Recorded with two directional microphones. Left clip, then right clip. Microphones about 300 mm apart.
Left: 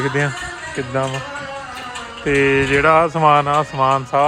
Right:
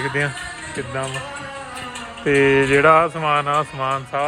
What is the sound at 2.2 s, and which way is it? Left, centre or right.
Mantra, centre.